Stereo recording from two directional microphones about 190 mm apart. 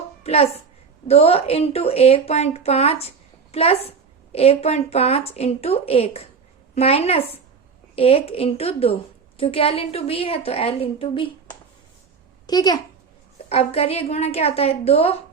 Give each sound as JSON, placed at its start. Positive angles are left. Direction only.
{"t": 0.2, "sound": "a child's voice", "side_deg": 30}
{"t": 12.5, "sound": "a woman's voice", "side_deg": 20}
{"t": 13.5, "sound": "a woman's voice", "side_deg": 30}